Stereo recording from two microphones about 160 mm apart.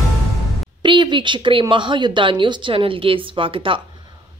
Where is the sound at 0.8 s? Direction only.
30° right (ahead or behind).